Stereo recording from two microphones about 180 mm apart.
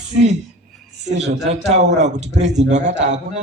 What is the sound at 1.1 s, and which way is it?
A man's voice, 40° right (ahead or behind).